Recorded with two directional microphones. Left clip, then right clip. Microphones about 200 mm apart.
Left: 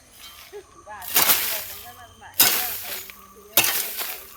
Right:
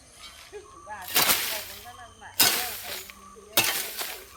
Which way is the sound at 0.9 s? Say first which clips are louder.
Left 2 dB; 15° left (ahead or behind).